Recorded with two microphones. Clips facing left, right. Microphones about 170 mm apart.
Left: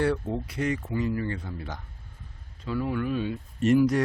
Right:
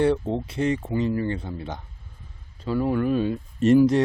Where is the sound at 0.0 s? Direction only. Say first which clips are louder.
Right 5 dB; 25° right (ahead or behind).